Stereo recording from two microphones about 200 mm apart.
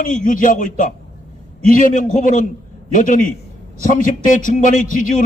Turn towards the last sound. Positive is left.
turn(degrees=40)  # may be behind; listen again after turning